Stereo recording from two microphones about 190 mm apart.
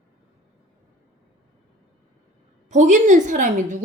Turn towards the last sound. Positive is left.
turn(degrees=-45)  # may be behind; listen again after turning